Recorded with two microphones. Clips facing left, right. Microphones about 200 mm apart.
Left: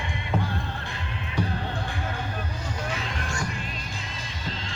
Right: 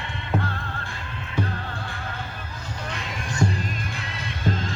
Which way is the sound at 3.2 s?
20° right (ahead or behind).